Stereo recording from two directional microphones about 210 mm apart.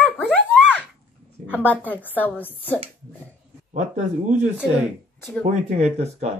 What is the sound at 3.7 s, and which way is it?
Speech, 35° right (ahead or behind).